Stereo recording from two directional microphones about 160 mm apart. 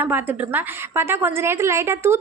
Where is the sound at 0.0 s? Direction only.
10° right (ahead or behind).